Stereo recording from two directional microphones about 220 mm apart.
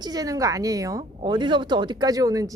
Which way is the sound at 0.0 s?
15° right (ahead or behind).